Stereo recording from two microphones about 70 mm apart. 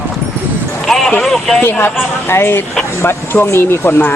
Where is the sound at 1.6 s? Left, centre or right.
Left.